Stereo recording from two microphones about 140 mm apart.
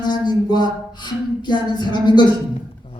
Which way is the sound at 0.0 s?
30° left (ahead or behind).